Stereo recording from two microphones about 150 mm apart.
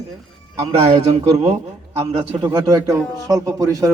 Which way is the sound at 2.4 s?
25° right (ahead or behind).